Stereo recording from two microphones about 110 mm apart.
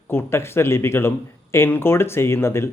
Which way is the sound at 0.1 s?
20° left (ahead or behind).